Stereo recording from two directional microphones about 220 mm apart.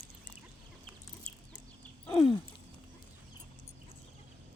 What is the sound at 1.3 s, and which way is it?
Chicken, 25° right (ahead or behind).